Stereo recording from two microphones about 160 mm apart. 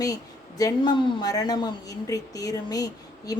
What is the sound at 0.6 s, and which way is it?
Speech, 25° left (ahead or behind).